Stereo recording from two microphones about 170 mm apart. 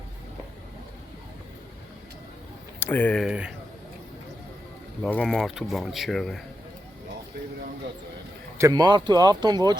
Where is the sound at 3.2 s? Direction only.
5° right (ahead or behind).